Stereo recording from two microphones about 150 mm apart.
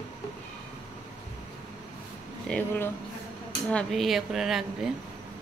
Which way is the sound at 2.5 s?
15° left (ahead or behind).